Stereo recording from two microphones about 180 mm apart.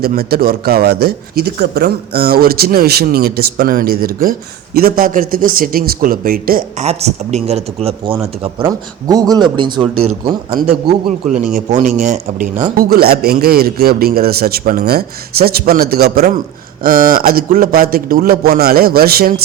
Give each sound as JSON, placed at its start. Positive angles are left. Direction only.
{"t": 0.0, "sound": "speech", "side_deg": -55}
{"t": 6.8, "sound": "speech", "side_deg": -35}
{"t": 8.6, "sound": "speech", "side_deg": -20}
{"t": 10.8, "sound": "a man's voice", "side_deg": -45}
{"t": 12.7, "sound": "a man's voice", "side_deg": -55}